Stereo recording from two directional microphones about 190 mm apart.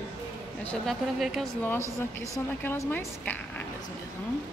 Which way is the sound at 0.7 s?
Centre (ahead or behind).